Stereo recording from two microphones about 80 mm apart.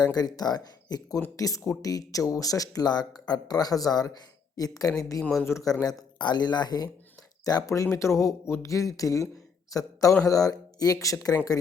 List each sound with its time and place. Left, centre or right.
0.0 s speech: left
5.5 s speech: centre
6.1 s speech: left
7.4 s speech: left